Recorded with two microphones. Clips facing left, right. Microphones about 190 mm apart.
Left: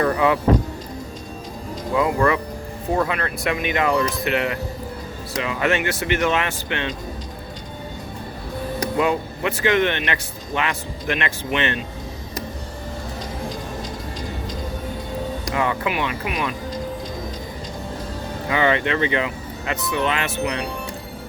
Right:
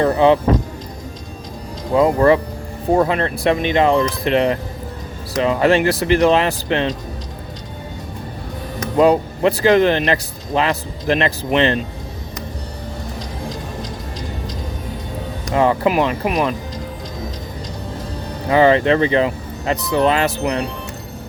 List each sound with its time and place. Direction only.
0.0 s speech: 30° right (ahead or behind)
1.9 s speech: 40° right (ahead or behind)
9.0 s speech: 35° right (ahead or behind)
15.5 s speech: 35° right (ahead or behind)
18.4 s speech: 35° right (ahead or behind)